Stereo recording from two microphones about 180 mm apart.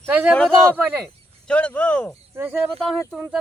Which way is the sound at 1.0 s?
5° left (ahead or behind).